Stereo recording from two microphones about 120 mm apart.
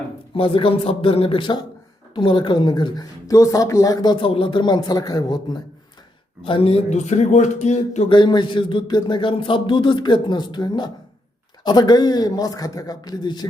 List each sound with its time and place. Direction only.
0.3 s a man's voice: 50° left (ahead or behind)
6.4 s speech: 50° left (ahead or behind); by 8.0 s 70° left (ahead or behind)
8.1 s a woman's voice: 40° left (ahead or behind)